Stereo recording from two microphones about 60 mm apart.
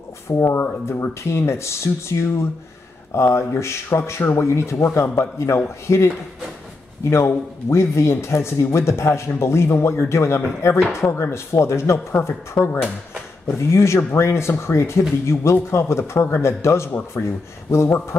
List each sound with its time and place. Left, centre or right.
0.3 s speech: left
5.9 s speech: left
7.1 s speech: left